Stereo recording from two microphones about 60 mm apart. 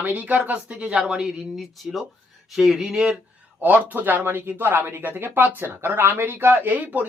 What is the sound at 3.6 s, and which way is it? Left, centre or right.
Speech, right.